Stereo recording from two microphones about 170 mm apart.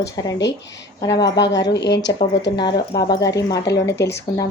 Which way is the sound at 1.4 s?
90° left.